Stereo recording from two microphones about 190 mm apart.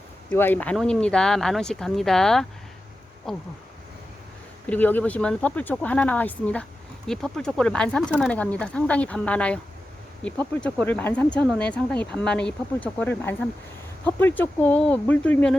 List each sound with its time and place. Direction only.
0.3 s speech: 10° left (ahead or behind)
4.6 s speech: 10° left (ahead or behind)